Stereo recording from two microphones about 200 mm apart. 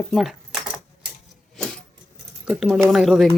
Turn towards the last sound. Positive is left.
turn(degrees=0)  # may be behind; listen again after turning